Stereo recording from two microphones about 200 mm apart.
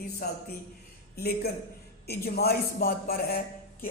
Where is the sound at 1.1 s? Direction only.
50° left (ahead or behind).